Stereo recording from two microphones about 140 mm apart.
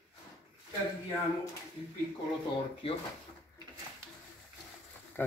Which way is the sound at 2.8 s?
40° left (ahead or behind).